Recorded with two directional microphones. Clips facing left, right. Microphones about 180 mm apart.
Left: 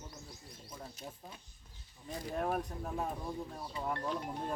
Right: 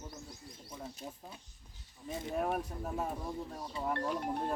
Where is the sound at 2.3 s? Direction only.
5° right (ahead or behind).